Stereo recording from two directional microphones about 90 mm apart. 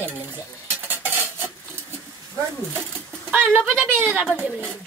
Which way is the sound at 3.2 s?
20° right (ahead or behind).